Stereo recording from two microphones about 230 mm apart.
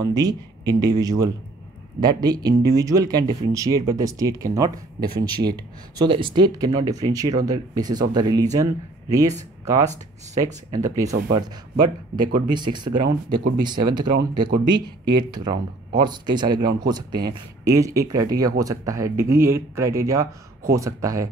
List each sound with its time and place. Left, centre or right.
0.0 s speech: centre